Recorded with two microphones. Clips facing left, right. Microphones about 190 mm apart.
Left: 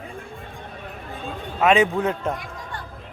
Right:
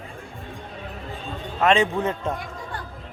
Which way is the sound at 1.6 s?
5° left (ahead or behind).